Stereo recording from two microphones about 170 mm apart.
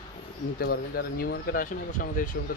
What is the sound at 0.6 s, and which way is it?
Speech, 65° left (ahead or behind).